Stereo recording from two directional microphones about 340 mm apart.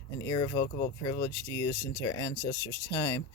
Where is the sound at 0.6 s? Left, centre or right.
Left.